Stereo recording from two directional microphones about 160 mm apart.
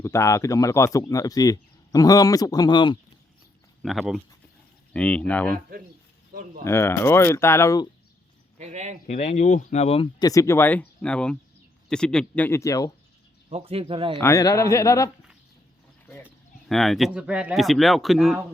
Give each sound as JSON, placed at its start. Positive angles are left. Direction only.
{"t": 0.0, "sound": "speech", "side_deg": 20}
{"t": 3.8, "sound": "speech", "side_deg": 0}
{"t": 6.7, "sound": "speech", "side_deg": 15}
{"t": 8.5, "sound": "speech", "side_deg": -45}
{"t": 9.0, "sound": "speech", "side_deg": 50}
{"t": 10.2, "sound": "speech", "side_deg": 20}
{"t": 13.5, "sound": "speech", "side_deg": -40}
{"t": 14.2, "sound": "speech", "side_deg": 20}
{"t": 16.6, "sound": "speech", "side_deg": 0}